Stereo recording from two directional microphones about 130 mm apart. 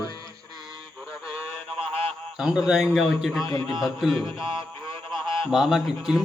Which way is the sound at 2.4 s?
5° right (ahead or behind).